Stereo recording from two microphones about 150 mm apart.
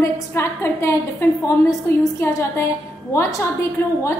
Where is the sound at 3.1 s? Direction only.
20° left (ahead or behind).